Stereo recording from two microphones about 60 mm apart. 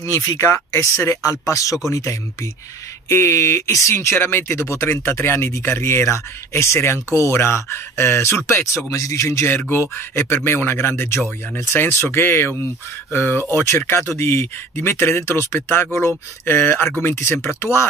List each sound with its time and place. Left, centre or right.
0.0 s speech: left
1.2 s speech: left
8.9 s speech: left
9.9 s speech: left